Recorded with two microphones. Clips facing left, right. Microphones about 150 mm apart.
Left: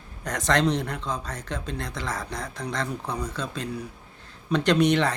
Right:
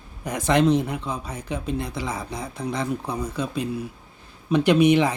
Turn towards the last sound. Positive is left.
turn(degrees=-10)  # may be behind; listen again after turning